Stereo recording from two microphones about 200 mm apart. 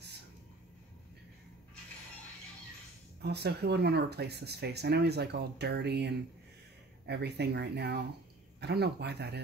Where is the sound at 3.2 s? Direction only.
55° right (ahead or behind).